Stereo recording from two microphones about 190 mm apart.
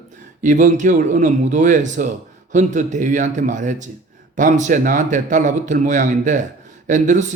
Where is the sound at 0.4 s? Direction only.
40° right (ahead or behind).